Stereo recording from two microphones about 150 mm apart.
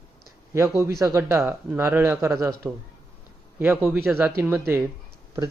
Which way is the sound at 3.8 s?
10° right (ahead or behind).